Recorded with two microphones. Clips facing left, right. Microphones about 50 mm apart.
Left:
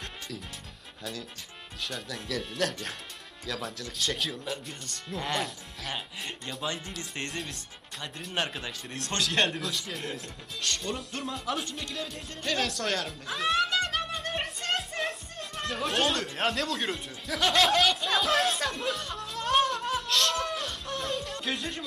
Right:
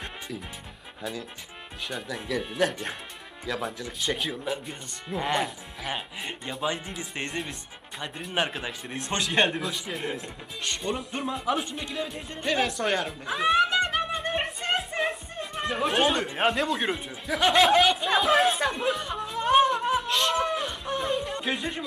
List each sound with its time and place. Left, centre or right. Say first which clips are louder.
1.8 s a man's voice: right 3 dB; centre